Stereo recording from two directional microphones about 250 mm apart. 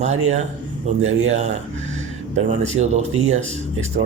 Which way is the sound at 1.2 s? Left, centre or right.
Right.